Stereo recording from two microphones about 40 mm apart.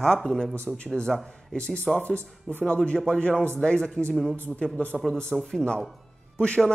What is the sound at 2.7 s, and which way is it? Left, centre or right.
Speech, left.